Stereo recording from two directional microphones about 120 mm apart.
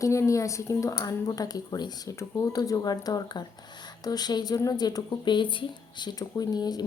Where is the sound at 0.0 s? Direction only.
25° left (ahead or behind).